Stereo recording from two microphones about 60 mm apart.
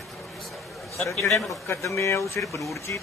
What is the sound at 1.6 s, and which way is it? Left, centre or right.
Speech, left.